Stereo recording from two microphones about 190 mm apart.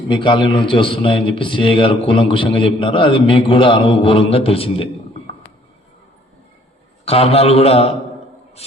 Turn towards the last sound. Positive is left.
turn(degrees=30)  # may be behind; listen again after turning